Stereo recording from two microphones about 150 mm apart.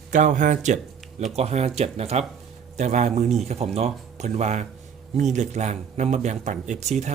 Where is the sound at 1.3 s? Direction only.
45° right (ahead or behind).